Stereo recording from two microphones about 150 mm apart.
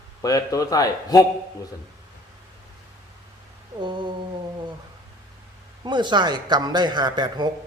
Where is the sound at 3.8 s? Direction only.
30° right (ahead or behind).